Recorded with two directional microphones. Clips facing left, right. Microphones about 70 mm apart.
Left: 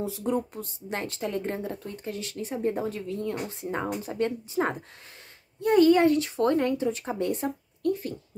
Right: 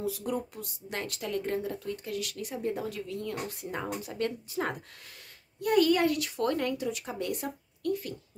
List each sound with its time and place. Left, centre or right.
0.0 s speech: left